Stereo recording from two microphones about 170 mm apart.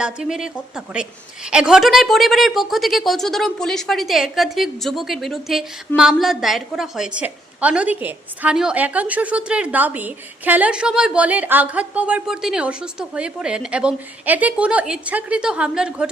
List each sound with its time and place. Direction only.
0.0 s a woman's voice: 5° right (ahead or behind)